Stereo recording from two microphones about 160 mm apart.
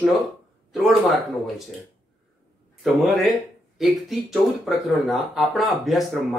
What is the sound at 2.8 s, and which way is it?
Speech, centre (ahead or behind).